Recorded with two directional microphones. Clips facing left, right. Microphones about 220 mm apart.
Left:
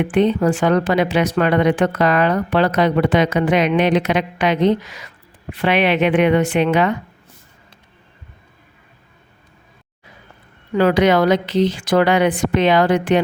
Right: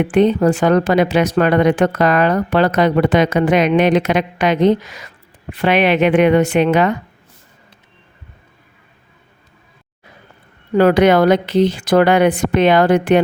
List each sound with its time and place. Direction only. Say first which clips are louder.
0.1 s speech: right 4 dB; 45° right (ahead or behind)
10.8 s speech: right 3 dB; 55° right (ahead or behind)